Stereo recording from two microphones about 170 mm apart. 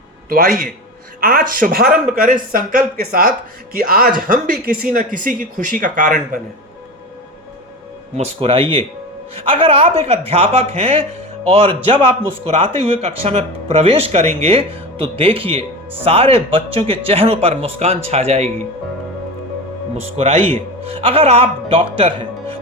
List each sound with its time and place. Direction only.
0.3 s speech: 55° right (ahead or behind)
8.1 s speech: 35° right (ahead or behind)
20.1 s speech: 35° right (ahead or behind)